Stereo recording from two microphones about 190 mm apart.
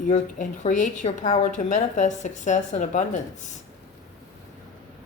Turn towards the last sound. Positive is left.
turn(degrees=40)  # may be behind; listen again after turning